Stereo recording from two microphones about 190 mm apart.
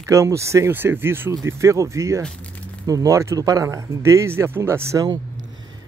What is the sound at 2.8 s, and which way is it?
Speech, 20° right (ahead or behind).